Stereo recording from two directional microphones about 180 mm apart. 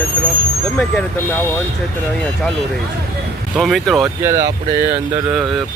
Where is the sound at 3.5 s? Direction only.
Centre (ahead or behind).